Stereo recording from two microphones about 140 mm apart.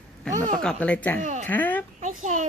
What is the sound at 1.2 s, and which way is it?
Speech, 60° right (ahead or behind).